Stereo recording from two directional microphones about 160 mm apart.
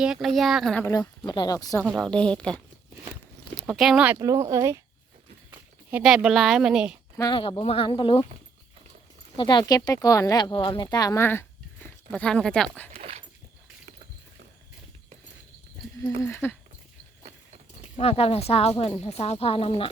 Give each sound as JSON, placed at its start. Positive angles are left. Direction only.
{"t": 0.0, "sound": "speech", "side_deg": 0}
{"t": 0.8, "sound": "speech", "side_deg": 20}
{"t": 1.8, "sound": "speech", "side_deg": 0}
{"t": 3.6, "sound": "speech", "side_deg": 0}
{"t": 4.2, "sound": "speech", "side_deg": -20}
{"t": 5.5, "sound": "speech", "side_deg": -5}
{"t": 7.2, "sound": "speech", "side_deg": 30}
{"t": 9.4, "sound": "speech", "side_deg": 30}
{"t": 12.1, "sound": "speech", "side_deg": 5}
{"t": 12.9, "sound": "dog", "side_deg": -40}
{"t": 16.0, "sound": "speech", "side_deg": 15}
{"t": 17.9, "sound": "speech", "side_deg": 40}